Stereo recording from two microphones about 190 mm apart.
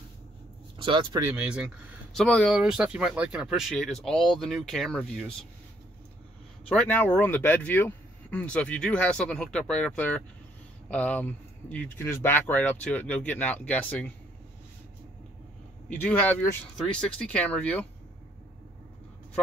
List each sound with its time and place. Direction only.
0.7 s speech: 25° right (ahead or behind)
1.2 s speech: 5° right (ahead or behind)
6.7 s speech: 10° left (ahead or behind)
15.9 s speech: 10° left (ahead or behind)